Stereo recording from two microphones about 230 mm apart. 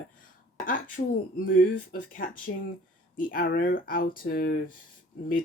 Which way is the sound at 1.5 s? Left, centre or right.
Left.